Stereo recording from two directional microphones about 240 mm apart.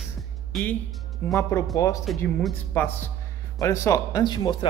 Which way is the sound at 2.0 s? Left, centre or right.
Centre.